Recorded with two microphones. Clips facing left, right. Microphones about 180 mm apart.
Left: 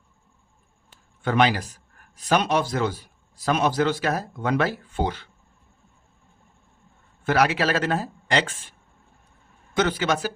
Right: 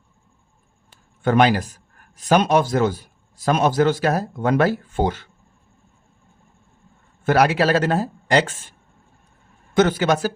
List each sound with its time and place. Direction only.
1.2 s speech: 45° right (ahead or behind)
7.3 s speech: 45° right (ahead or behind)
9.7 s speech: 45° right (ahead or behind)